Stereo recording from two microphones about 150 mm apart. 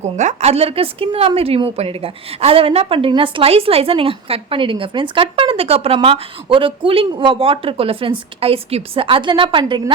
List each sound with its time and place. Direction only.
0.0 s a woman's voice: 50° right (ahead or behind); by 9.9 s 30° right (ahead or behind)